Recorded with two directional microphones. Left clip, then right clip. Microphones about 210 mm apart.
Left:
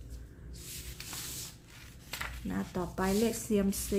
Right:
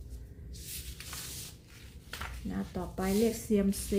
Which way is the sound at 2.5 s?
15° left (ahead or behind).